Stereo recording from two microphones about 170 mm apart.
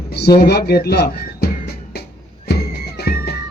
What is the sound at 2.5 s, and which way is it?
Music, 70° left (ahead or behind).